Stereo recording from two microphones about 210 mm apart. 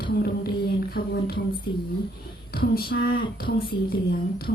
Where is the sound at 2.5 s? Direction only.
45° left (ahead or behind).